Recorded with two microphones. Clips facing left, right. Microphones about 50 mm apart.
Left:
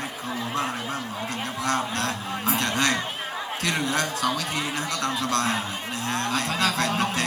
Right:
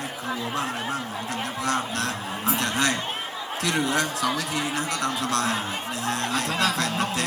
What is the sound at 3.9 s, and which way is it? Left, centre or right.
Speech, right.